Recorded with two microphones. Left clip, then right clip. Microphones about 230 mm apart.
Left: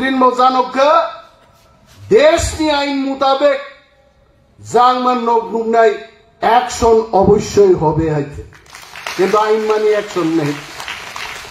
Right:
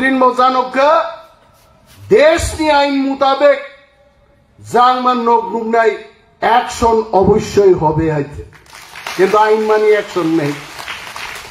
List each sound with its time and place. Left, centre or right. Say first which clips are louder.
0.0 s a man's voice: even; right
2.0 s a man's voice: even; right
4.6 s a man's voice: right 1 dB; right
9.3 s a man's voice: right 2 dB; right